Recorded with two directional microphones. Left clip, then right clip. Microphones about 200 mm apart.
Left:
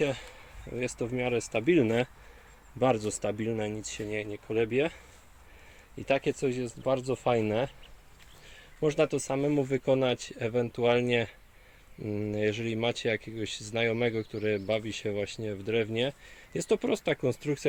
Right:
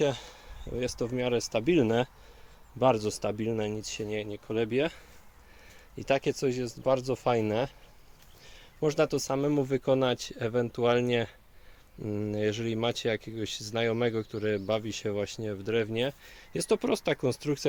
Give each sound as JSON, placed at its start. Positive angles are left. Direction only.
{"t": 0.0, "sound": "speech", "side_deg": -15}
{"t": 6.0, "sound": "speech", "side_deg": -10}
{"t": 8.8, "sound": "speech", "side_deg": -5}